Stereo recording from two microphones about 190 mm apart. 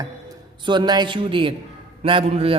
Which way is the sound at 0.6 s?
25° right (ahead or behind).